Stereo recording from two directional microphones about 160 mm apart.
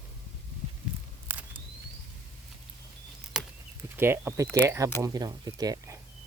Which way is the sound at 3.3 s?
5° right (ahead or behind).